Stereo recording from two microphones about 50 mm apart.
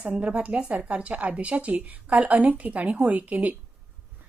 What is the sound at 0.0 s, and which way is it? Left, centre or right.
A woman's voice, right.